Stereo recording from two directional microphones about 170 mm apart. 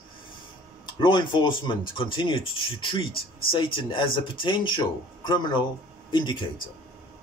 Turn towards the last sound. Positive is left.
turn(degrees=25)  # may be behind; listen again after turning